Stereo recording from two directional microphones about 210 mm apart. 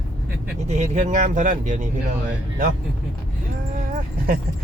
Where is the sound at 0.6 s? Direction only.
35° right (ahead or behind).